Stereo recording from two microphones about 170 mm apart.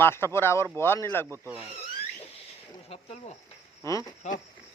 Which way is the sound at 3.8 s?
15° left (ahead or behind).